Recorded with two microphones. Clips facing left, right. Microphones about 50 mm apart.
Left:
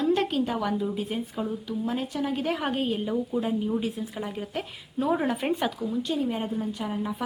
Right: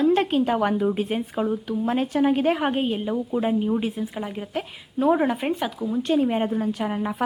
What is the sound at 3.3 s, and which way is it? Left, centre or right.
Speech, right.